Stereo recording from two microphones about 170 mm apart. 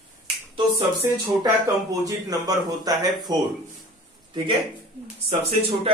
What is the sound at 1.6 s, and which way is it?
Speech, 20° right (ahead or behind).